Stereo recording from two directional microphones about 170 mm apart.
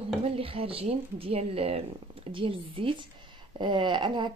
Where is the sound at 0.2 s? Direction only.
35° right (ahead or behind).